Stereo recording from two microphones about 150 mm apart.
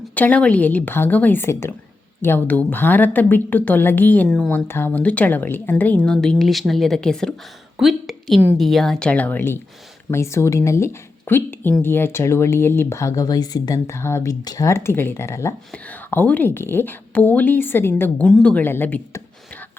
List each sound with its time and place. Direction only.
0.1 s a woman's voice: 10° left (ahead or behind)